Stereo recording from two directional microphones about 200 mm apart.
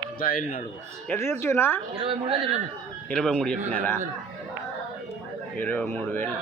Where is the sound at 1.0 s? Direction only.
10° left (ahead or behind).